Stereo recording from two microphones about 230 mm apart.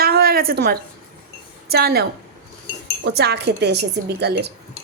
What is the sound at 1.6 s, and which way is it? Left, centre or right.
A woman's voice, right.